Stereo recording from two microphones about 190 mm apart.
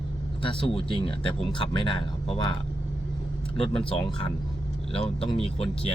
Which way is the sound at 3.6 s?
30° left (ahead or behind).